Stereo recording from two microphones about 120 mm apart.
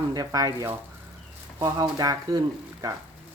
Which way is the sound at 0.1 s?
30° right (ahead or behind).